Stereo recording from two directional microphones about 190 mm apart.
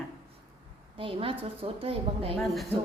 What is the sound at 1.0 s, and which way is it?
A woman's voice, 30° right (ahead or behind).